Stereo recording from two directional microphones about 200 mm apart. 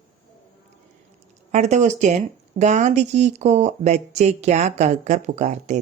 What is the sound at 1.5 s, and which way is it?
Speech, 35° right (ahead or behind).